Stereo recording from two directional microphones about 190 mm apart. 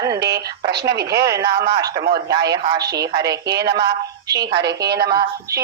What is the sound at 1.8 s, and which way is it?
Speech, 55° right (ahead or behind).